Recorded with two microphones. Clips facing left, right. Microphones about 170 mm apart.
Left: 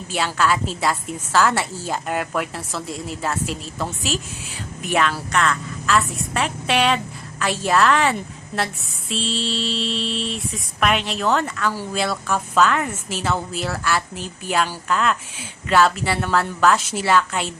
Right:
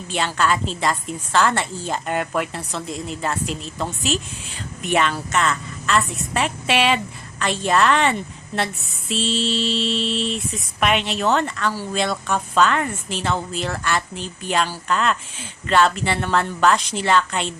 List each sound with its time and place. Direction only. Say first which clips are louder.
0.1 s a woman's voice: even; 5° left (ahead or behind)
11.7 s speech: right 1 dB; 15° left (ahead or behind)
12.0 s a woman's voice: even; centre (ahead or behind)